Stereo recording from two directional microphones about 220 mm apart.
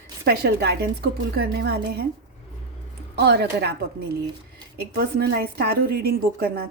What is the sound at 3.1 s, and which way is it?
Speech, 50° right (ahead or behind).